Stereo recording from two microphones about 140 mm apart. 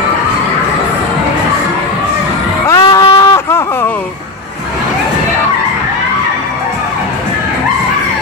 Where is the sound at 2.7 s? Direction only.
20° left (ahead or behind).